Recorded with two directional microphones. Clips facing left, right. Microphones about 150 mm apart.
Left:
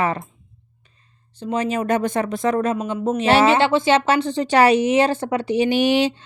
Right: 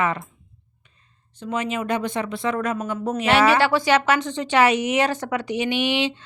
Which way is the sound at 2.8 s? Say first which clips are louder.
Left 4 dB; 25° left (ahead or behind).